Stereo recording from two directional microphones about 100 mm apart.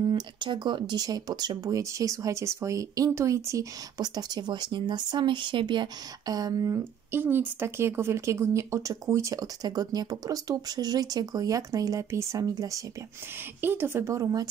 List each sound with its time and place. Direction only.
0.0 s speech: 50° right (ahead or behind); by 3.6 s 30° right (ahead or behind)
4.0 s speech: 40° right (ahead or behind)
6.8 s speech: 25° right (ahead or behind)
13.6 s speech: 20° right (ahead or behind); by 14.5 s 35° right (ahead or behind)